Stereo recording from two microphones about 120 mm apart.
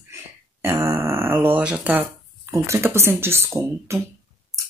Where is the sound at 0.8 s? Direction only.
20° right (ahead or behind).